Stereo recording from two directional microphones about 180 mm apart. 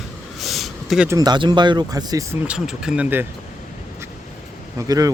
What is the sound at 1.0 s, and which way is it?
Speech, 20° right (ahead or behind).